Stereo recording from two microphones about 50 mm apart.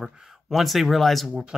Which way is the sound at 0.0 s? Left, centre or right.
Centre.